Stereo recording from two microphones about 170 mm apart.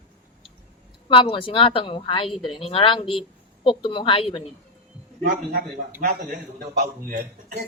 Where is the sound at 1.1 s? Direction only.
30° left (ahead or behind).